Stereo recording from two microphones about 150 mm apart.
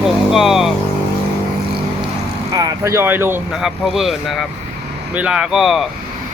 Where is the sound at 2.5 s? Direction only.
20° right (ahead or behind).